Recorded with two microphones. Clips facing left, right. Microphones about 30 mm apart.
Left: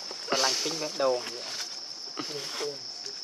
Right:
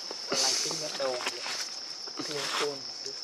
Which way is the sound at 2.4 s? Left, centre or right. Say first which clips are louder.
Right 7 dB; right.